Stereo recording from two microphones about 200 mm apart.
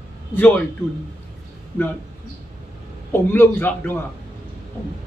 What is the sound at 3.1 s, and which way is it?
Speech, 10° left (ahead or behind).